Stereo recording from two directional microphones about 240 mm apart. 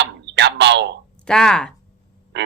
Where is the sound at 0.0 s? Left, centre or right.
Right.